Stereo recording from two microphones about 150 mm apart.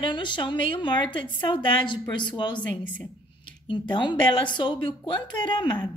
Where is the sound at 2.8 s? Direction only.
10° left (ahead or behind).